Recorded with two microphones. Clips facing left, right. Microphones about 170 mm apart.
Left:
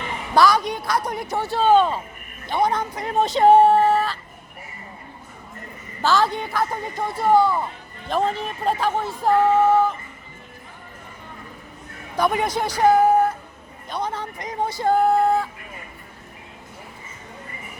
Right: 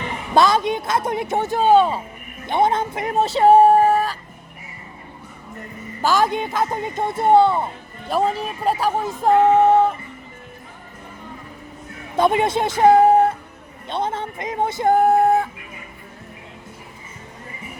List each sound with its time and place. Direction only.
0.3 s a man's voice: 25° right (ahead or behind)
2.5 s a man's voice: 25° right (ahead or behind)
3.1 s speech: 5° right (ahead or behind)
6.0 s a man's voice: 15° right (ahead or behind)
8.0 s speech: 10° right (ahead or behind)
9.2 s a man's voice: 25° right (ahead or behind)
12.1 s a man's voice: 25° right (ahead or behind)